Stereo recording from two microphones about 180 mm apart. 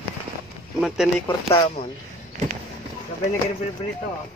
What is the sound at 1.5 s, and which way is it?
Speech, 30° left (ahead or behind).